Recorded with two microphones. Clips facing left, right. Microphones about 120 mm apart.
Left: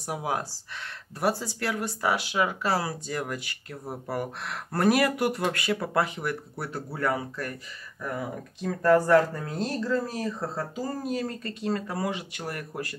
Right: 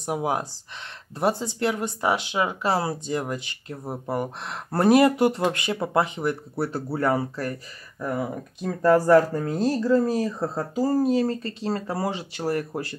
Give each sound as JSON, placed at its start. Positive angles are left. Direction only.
{"t": 0.0, "sound": "speech", "side_deg": -20}